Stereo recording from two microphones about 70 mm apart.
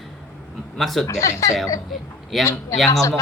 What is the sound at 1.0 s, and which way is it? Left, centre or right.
Speech, left.